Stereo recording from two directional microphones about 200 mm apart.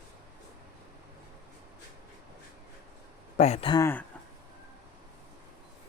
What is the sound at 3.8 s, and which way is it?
Speech, 10° left (ahead or behind).